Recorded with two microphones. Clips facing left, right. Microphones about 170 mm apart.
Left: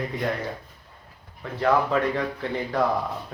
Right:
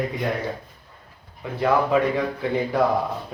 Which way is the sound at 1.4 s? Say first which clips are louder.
Right 1 dB; 10° right (ahead or behind).